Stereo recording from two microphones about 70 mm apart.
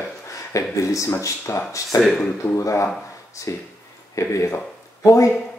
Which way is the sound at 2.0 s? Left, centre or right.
Centre.